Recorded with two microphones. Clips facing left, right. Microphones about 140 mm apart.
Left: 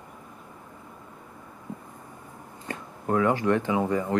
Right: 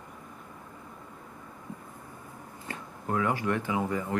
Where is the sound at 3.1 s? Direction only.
40° left (ahead or behind).